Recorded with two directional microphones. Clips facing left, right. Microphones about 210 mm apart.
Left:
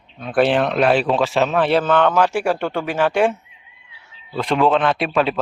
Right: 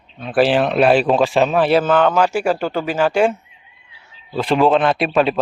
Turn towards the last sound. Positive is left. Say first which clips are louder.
# right 3 dB
turn(degrees=-10)  # may be behind; listen again after turning